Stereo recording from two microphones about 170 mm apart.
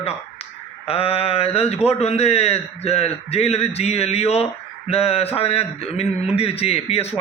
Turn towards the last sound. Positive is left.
turn(degrees=35)  # may be behind; listen again after turning